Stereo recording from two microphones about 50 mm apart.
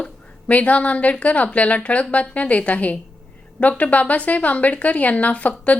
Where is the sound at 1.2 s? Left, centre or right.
Left.